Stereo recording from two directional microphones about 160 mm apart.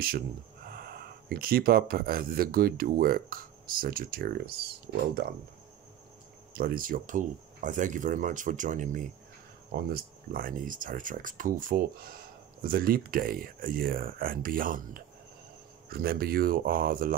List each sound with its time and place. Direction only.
0.7 s speech: 70° right (ahead or behind)
5.2 s speech: 90° right
6.5 s speech: 65° right (ahead or behind)
9.8 s speech: 70° right (ahead or behind)
15.9 s speech: 70° right (ahead or behind)